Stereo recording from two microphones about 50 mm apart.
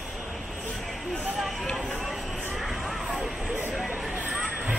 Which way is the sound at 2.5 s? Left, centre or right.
Centre.